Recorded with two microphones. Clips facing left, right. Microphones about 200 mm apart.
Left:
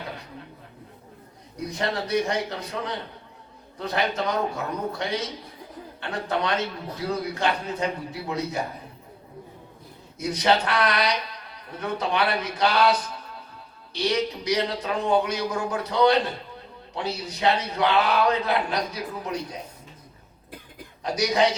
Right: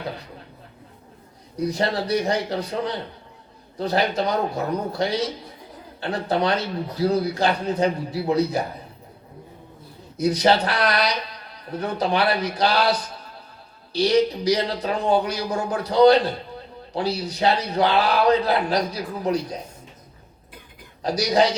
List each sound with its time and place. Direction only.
1.5 s a man's voice: 35° right (ahead or behind)
10.2 s a man's voice: 35° right (ahead or behind)
21.0 s a man's voice: 35° right (ahead or behind)